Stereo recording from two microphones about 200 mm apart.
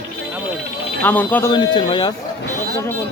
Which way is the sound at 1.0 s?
10° left (ahead or behind).